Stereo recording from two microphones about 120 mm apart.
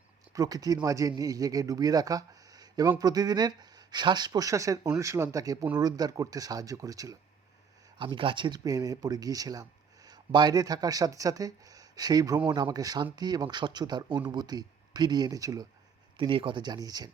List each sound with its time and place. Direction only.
0.3 s speech: 30° right (ahead or behind)
7.9 s speech: 40° right (ahead or behind)
16.1 s speech: 45° right (ahead or behind)